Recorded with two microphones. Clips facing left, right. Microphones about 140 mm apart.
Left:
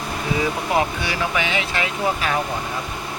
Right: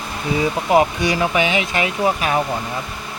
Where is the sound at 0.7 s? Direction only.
20° right (ahead or behind).